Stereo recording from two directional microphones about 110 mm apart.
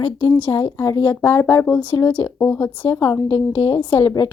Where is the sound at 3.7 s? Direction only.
50° left (ahead or behind).